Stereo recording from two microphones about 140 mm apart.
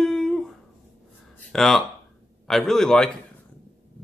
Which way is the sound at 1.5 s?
Centre (ahead or behind).